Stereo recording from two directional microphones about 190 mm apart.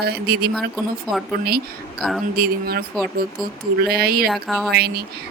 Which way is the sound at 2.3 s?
50° right (ahead or behind).